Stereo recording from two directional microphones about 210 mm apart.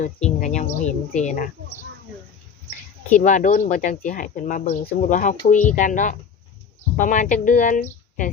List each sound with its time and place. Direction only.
0.0 s speech: 35° left (ahead or behind)
3.1 s speech: 35° left (ahead or behind)